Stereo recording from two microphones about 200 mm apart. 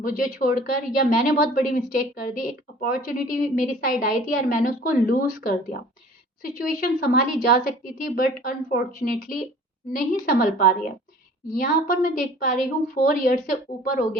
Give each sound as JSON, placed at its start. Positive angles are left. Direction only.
{"t": 0.0, "sound": "a woman's voice", "side_deg": 45}